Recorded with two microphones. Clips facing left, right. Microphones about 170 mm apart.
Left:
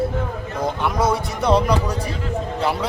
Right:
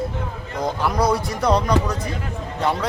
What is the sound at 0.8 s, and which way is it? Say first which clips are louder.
Speech: right 1 dB; centre (ahead or behind).